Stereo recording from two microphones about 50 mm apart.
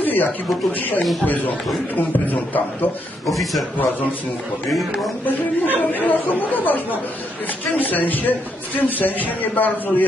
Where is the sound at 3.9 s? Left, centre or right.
Left.